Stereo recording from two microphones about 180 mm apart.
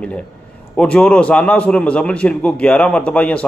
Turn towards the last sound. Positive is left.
turn(degrees=5)  # may be behind; listen again after turning